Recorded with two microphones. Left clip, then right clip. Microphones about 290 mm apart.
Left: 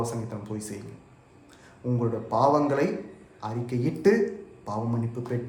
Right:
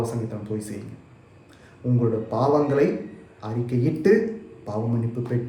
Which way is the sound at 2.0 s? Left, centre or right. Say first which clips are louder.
Right 1 dB; centre.